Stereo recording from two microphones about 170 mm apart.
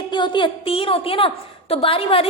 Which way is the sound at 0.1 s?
25° left (ahead or behind).